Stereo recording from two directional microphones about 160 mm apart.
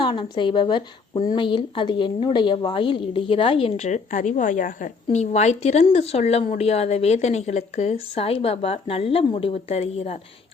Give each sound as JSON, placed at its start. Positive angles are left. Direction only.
{"t": 0.0, "sound": "speech", "side_deg": 30}